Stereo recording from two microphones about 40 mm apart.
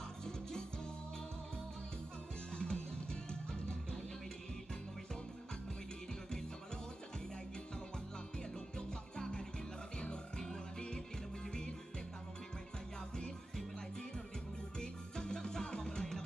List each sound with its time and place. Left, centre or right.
0.2 s music: centre
2.5 s music: centre
8.7 s music: centre
13.1 s music: centre
14.8 s music: centre